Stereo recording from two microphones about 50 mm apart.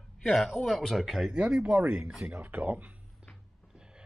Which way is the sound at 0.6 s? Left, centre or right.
Centre.